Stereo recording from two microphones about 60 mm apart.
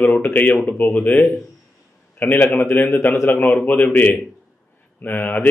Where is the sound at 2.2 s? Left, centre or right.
Left.